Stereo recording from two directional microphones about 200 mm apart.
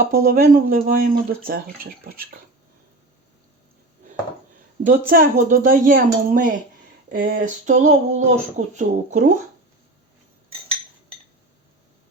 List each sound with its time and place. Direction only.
0.0 s speech: 45° right (ahead or behind)
4.8 s speech: 45° right (ahead or behind)
7.1 s a sound: 45° right (ahead or behind)